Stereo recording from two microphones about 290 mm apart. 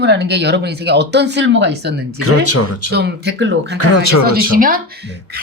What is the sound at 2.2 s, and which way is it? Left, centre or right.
Speech, left.